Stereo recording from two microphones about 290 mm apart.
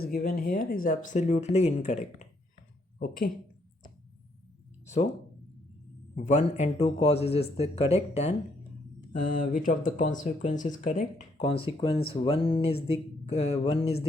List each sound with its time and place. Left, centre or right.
0.0 s speech: left
6.2 s speech: left